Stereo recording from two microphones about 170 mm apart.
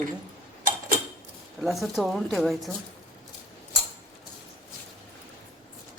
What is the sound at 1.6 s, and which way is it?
A woman's voice, centre (ahead or behind).